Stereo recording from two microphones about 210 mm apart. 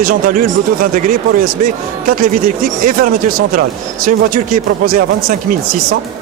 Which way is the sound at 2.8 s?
40° right (ahead or behind).